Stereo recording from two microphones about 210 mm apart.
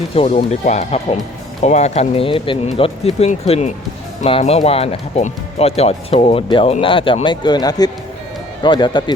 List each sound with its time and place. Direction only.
0.1 s speech: 25° left (ahead or behind)